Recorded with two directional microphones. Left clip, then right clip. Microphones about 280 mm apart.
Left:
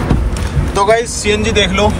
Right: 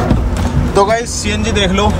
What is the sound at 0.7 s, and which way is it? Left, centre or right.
Speech, centre.